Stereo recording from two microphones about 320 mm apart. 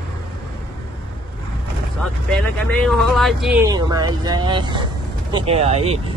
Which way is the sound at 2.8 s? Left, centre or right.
Centre.